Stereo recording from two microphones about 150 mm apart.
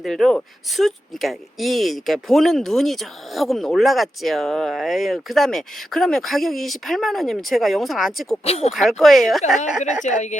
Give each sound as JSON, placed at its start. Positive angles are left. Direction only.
{"t": 0.0, "sound": "speech", "side_deg": 0}
{"t": 8.4, "sound": "a woman's voice", "side_deg": 45}
{"t": 8.7, "sound": "speech", "side_deg": 0}
{"t": 9.6, "sound": "a woman's voice", "side_deg": 55}